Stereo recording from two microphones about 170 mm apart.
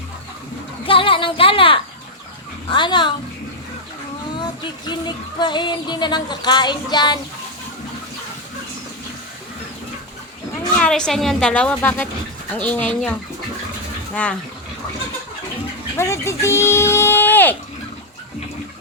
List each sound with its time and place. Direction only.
0.9 s speech: 30° left (ahead or behind)
4.9 s speech: 25° left (ahead or behind)
10.8 s a woman's voice: 5° left (ahead or behind)
16.0 s speech: 15° left (ahead or behind)